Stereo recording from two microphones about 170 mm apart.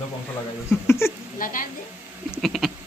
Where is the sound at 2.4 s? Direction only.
Centre (ahead or behind).